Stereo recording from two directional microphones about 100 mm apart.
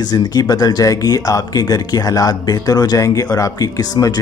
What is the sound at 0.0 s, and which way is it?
A man's voice, 45° left (ahead or behind).